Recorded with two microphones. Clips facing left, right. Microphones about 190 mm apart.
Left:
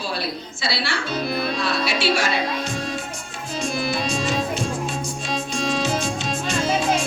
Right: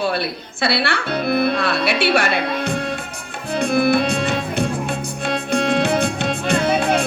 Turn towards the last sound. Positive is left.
turn(degrees=-60)  # may be behind; listen again after turning